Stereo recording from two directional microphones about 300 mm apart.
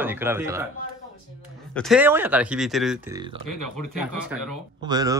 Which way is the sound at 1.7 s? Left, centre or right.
Centre.